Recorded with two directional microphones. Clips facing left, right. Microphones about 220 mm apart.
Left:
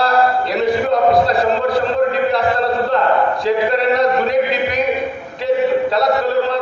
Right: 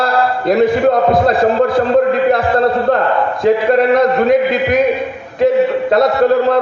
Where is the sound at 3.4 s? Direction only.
50° right (ahead or behind).